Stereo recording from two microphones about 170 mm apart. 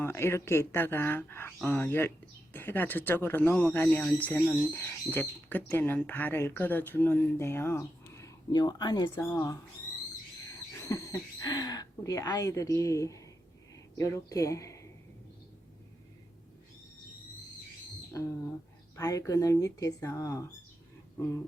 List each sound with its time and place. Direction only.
0.0 s speech: 15° left (ahead or behind)
10.8 s speech: 20° left (ahead or behind)
18.9 s speech: 20° left (ahead or behind)